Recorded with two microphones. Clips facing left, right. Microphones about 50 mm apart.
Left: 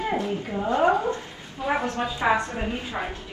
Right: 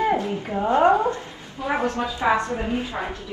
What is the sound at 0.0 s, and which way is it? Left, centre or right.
Speech, right.